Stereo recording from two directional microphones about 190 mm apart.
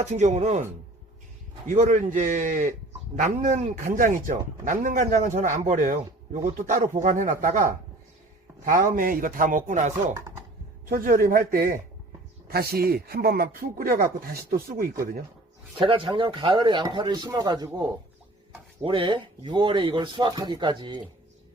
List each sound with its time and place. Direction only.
0.0 s speech: 35° right (ahead or behind)
1.6 s speech: 40° right (ahead or behind)
15.8 s speech: 25° right (ahead or behind)